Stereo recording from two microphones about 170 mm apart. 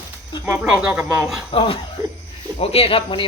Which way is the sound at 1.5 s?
35° left (ahead or behind).